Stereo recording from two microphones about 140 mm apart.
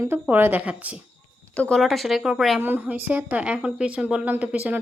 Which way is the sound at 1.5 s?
5° left (ahead or behind).